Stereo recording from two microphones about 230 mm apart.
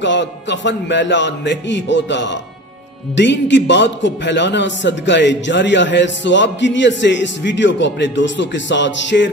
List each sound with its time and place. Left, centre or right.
0.0 s a man's voice: left